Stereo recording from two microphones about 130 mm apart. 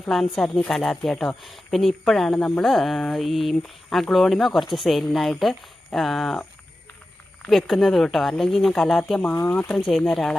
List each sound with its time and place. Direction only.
0.0 s a woman's voice: centre (ahead or behind)
7.4 s speech: centre (ahead or behind)
9.3 s speech: 15° left (ahead or behind)
9.7 s speech: centre (ahead or behind)